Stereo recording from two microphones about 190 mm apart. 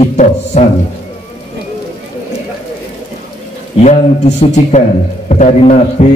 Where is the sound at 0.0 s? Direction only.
35° left (ahead or behind).